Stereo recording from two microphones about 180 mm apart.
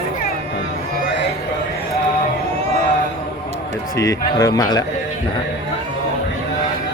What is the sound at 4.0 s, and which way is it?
Speech, 20° left (ahead or behind).